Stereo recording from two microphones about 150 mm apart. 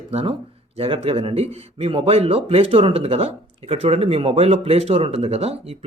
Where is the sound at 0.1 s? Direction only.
40° right (ahead or behind).